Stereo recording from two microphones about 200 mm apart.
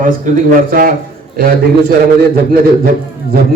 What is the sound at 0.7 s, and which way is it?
Speech, 45° right (ahead or behind).